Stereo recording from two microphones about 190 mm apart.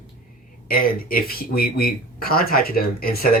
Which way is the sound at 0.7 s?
50° left (ahead or behind).